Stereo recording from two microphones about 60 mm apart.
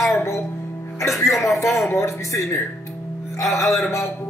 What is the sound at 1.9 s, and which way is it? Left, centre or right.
Speech, left.